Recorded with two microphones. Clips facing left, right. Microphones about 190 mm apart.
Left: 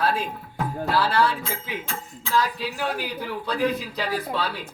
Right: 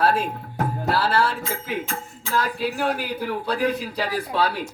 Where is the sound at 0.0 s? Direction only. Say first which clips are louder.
Right 4 dB; 45° right (ahead or behind).